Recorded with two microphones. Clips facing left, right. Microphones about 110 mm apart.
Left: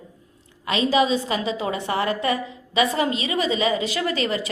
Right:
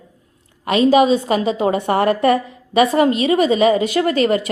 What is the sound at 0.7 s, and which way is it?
A woman's voice, 45° right (ahead or behind).